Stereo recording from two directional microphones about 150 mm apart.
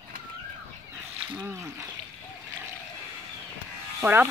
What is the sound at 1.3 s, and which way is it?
Speech, 15° right (ahead or behind).